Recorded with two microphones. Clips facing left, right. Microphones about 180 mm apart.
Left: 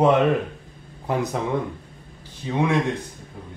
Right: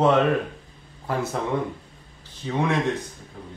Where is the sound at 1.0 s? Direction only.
20° left (ahead or behind).